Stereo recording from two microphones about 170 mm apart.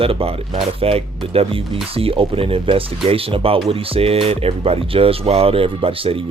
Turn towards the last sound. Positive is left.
turn(degrees=-35)  # may be behind; listen again after turning